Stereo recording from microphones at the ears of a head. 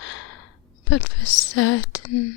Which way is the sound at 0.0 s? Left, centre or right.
Left.